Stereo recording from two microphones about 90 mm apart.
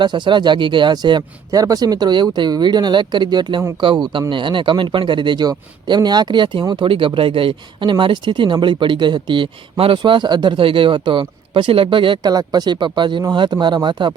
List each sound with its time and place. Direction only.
0.0 s speech: 60° right (ahead or behind)
1.5 s speech: 40° right (ahead or behind)
3.8 s speech: 70° right (ahead or behind)
6.8 s speech: 75° right (ahead or behind)
12.3 s speech: 45° right (ahead or behind)